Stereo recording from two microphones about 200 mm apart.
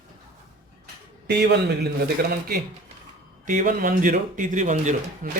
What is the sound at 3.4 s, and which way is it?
Speech, 40° right (ahead or behind).